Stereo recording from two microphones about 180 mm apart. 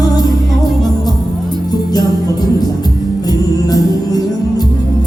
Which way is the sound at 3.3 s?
20° left (ahead or behind).